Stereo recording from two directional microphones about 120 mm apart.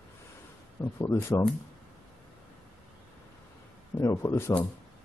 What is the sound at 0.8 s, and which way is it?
Speech, 20° left (ahead or behind).